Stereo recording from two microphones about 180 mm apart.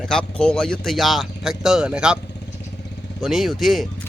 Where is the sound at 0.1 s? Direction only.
5° left (ahead or behind).